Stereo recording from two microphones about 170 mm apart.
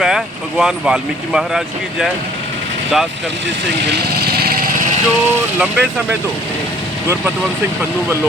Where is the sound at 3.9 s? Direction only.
65° right (ahead or behind).